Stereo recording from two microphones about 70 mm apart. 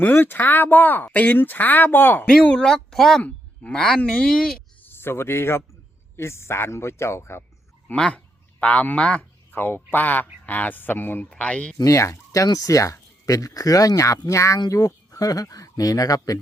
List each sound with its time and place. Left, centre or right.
0.0 s speech: left
2.2 s speech: centre
4.8 s a man's voice: left
7.9 s speech: left
9.6 s speech: left
11.3 s speech: centre
11.8 s speech: left